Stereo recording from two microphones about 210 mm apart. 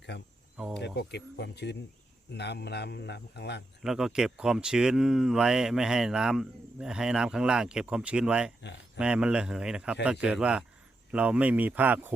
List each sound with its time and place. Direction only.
0.8 s speech: 55° left (ahead or behind)
3.8 s speech: centre (ahead or behind)